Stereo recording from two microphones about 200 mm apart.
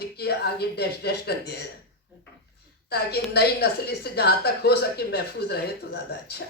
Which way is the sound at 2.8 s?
55° left (ahead or behind).